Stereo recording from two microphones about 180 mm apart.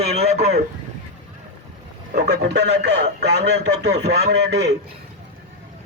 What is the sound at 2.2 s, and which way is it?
Speech, 70° right (ahead or behind).